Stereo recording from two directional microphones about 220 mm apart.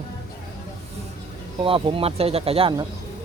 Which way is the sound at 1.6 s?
25° right (ahead or behind).